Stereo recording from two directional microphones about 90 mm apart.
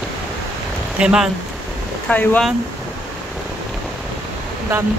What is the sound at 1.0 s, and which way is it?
Speech, 10° right (ahead or behind).